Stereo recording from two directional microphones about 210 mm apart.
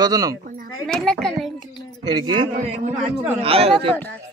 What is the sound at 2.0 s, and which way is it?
Speech, 20° right (ahead or behind).